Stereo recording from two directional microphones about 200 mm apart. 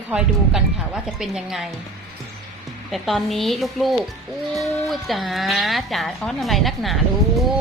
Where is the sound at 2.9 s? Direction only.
Centre (ahead or behind).